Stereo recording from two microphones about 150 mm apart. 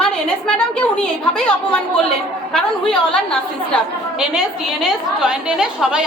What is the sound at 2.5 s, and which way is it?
Speech, 5° left (ahead or behind).